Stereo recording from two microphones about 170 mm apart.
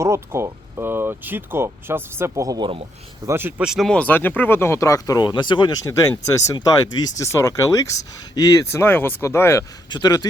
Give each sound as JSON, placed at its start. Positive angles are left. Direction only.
{"t": 0.0, "sound": "speech", "side_deg": -15}